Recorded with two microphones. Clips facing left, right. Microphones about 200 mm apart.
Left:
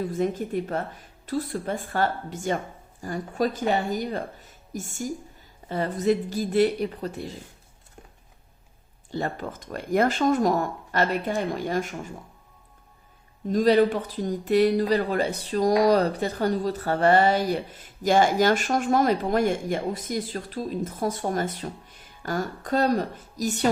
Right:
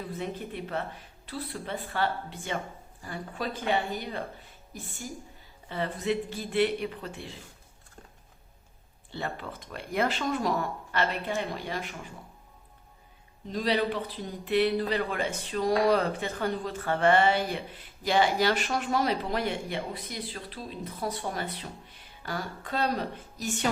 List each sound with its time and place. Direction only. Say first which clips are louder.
0.0 s speech: left 9 dB; 45° left (ahead or behind)
9.1 s speech: left 6 dB; 45° left (ahead or behind)
13.5 s speech: left 9 dB; 45° left (ahead or behind)